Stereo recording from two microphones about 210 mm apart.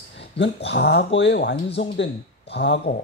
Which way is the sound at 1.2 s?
55° left (ahead or behind).